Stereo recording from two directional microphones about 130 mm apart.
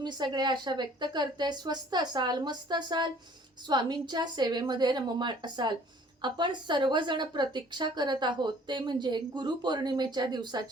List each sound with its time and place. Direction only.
0.0 s a woman's voice: 35° right (ahead or behind)